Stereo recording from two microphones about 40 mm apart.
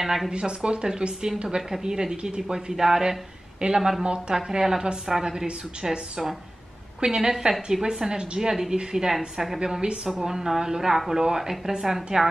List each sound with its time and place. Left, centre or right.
0.0 s speech: centre
0.3 s a woman's voice: right
4.0 s a woman's voice: right; by 9.6 s centre
9.6 s a woman's voice: right